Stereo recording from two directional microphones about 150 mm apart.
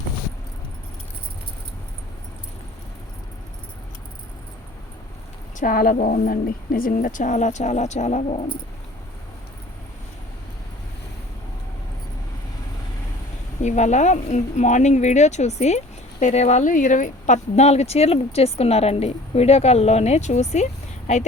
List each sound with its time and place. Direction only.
5.5 s a woman's voice: 65° left (ahead or behind); by 8.4 s 45° left (ahead or behind)
13.6 s speech: 50° left (ahead or behind)